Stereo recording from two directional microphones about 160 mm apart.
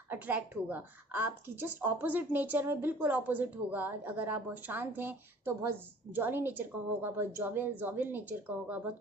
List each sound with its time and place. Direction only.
0.1 s a woman's voice: 10° right (ahead or behind)